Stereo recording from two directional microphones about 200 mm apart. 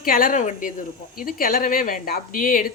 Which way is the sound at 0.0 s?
45° left (ahead or behind).